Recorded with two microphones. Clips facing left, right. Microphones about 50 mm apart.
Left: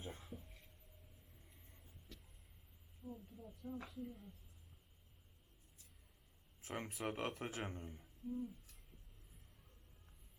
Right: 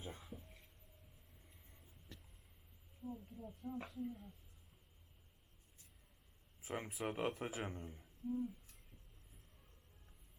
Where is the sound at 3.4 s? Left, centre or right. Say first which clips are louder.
Right 3 dB; right.